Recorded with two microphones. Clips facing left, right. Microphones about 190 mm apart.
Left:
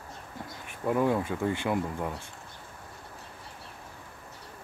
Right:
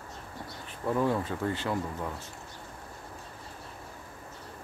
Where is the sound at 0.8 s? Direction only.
15° left (ahead or behind).